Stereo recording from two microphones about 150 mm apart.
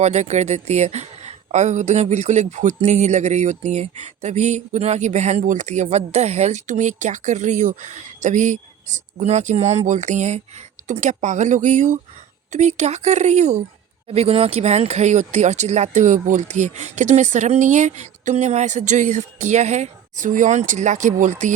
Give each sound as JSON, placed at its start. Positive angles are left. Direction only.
{"t": 0.0, "sound": "speech", "side_deg": -50}